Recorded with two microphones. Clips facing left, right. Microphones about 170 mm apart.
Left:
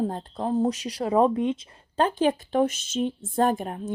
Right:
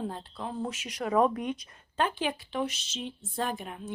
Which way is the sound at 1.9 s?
40° left (ahead or behind).